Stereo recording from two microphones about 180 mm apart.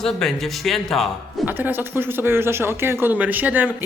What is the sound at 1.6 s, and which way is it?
Speech, 10° right (ahead or behind).